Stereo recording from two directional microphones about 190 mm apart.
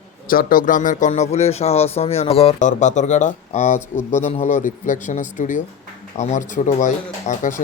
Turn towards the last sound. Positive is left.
turn(degrees=40)  # may be behind; listen again after turning